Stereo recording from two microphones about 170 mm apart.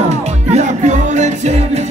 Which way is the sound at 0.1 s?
40° right (ahead or behind).